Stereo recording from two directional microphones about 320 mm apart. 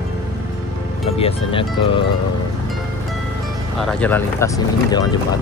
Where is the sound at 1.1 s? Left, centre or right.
Centre.